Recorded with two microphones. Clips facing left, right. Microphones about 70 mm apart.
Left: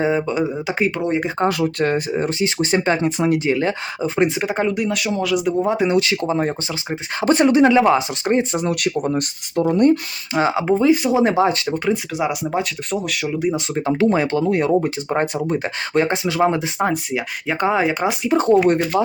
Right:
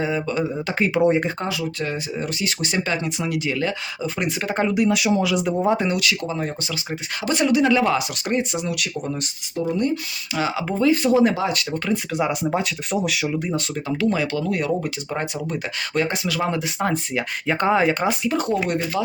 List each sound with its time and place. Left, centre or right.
0.0 s speech: left
0.9 s speech: centre
1.5 s speech: left
2.2 s speech: left
4.4 s speech: centre
4.6 s speech: centre
5.9 s speech: left
8.5 s speech: left
10.3 s speech: left
12.1 s speech: centre
12.5 s speech: centre
13.2 s speech: centre
13.7 s speech: left
17.1 s speech: centre; by 18.8 s left